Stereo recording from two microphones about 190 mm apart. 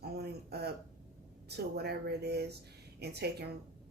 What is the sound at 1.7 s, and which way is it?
Speech, 60° right (ahead or behind).